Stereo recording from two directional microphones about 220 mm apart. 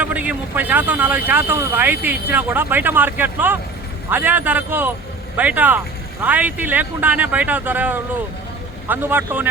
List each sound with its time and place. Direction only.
0.0 s speech: 5° right (ahead or behind)